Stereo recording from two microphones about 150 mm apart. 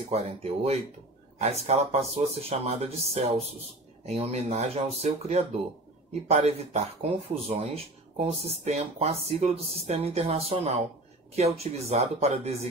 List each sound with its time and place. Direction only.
0.1 s speech: 45° right (ahead or behind)